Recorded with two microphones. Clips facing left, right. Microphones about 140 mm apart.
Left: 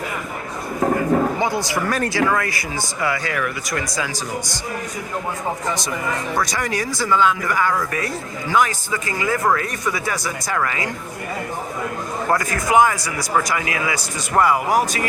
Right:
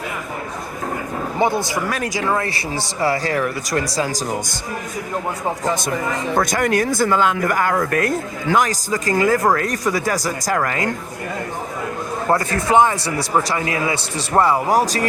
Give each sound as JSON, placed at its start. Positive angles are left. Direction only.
{"t": 1.4, "sound": "speech", "side_deg": -25}
{"t": 1.9, "sound": "speech", "side_deg": -15}
{"t": 6.4, "sound": "speech", "side_deg": -50}
{"t": 12.3, "sound": "speech", "side_deg": -30}